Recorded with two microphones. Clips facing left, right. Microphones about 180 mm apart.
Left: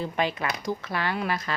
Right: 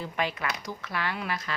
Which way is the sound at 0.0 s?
25° left (ahead or behind).